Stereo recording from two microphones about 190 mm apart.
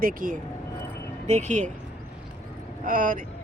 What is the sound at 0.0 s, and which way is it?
Speech, 45° right (ahead or behind).